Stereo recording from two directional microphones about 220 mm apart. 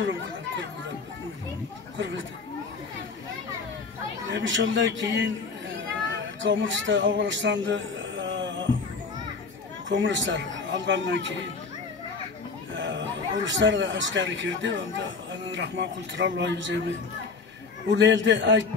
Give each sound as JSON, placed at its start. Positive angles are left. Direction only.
{"t": 4.3, "sound": "speech", "side_deg": -55}
{"t": 5.8, "sound": "a sound", "side_deg": -55}
{"t": 9.8, "sound": "speech", "side_deg": -55}
{"t": 12.7, "sound": "a man's voice", "side_deg": -55}
{"t": 17.8, "sound": "speech", "side_deg": -55}